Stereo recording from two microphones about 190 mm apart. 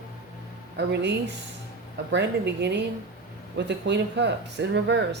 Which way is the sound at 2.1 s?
65° right (ahead or behind).